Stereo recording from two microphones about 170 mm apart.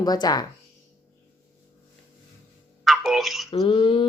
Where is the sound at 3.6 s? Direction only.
30° left (ahead or behind).